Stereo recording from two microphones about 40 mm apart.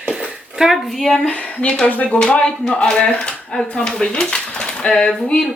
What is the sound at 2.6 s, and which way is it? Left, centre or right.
Speech, left.